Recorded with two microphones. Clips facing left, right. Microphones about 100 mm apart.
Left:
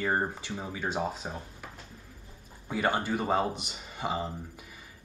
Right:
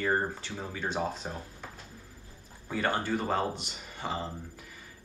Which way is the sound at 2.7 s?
15° left (ahead or behind).